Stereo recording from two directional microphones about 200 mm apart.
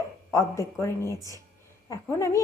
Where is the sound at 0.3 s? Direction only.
15° left (ahead or behind).